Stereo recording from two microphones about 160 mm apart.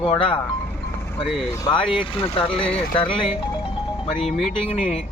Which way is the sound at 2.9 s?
30° left (ahead or behind).